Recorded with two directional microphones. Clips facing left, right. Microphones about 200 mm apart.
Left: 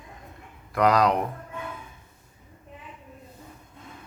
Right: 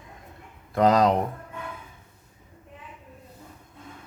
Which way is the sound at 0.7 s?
25° right (ahead or behind).